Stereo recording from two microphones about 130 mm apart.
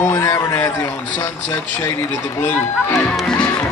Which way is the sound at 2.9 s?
10° left (ahead or behind).